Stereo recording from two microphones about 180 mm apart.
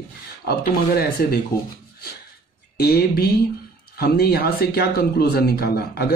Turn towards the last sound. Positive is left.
turn(degrees=60)  # may be behind; listen again after turning